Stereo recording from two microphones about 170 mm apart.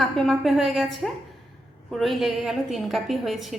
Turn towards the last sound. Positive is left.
turn(degrees=0)  # may be behind; listen again after turning